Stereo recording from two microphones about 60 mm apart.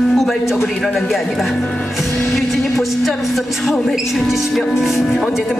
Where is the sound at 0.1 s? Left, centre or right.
Centre.